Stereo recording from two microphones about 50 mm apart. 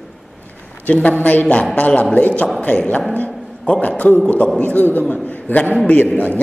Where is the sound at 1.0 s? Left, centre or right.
Left.